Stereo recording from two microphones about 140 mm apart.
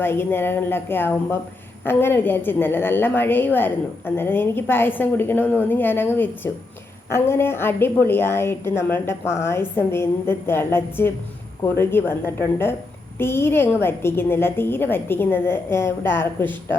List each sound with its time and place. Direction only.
0.0 s a woman's voice: 15° left (ahead or behind)